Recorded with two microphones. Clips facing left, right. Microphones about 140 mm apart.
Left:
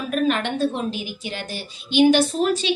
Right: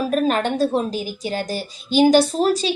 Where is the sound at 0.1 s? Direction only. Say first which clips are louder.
Left 2 dB; 35° right (ahead or behind).